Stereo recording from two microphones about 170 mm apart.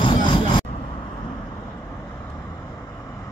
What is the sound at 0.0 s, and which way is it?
Vehicle, 30° left (ahead or behind).